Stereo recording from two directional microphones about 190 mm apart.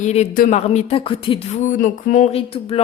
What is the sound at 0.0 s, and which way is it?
Speech, 35° left (ahead or behind).